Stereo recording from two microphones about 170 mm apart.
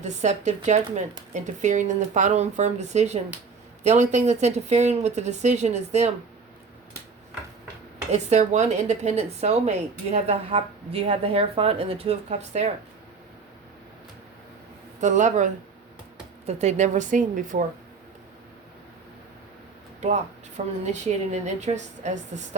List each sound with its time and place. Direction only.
0.0 s a woman's voice: 45° right (ahead or behind)
8.1 s a woman's voice: 40° right (ahead or behind)
15.0 s speech: 45° right (ahead or behind)
20.0 s a woman's voice: 40° right (ahead or behind)